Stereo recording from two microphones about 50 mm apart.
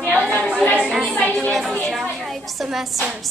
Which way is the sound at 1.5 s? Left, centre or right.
Centre.